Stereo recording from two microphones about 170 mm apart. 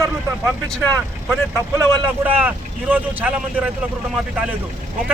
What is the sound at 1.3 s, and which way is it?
Speech, 15° right (ahead or behind).